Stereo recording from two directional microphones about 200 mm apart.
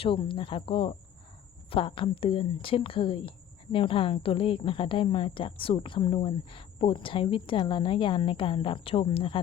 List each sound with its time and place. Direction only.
0.0 s a woman's voice: 25° left (ahead or behind)